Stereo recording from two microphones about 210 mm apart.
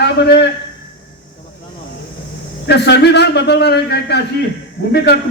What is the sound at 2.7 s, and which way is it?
A man's voice, 50° left (ahead or behind).